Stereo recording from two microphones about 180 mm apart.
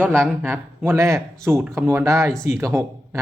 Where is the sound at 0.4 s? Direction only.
10° right (ahead or behind).